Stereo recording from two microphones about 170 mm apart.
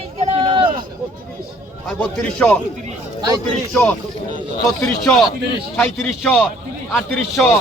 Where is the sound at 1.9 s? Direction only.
5° left (ahead or behind).